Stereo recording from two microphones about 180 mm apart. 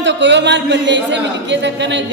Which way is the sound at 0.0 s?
80° right.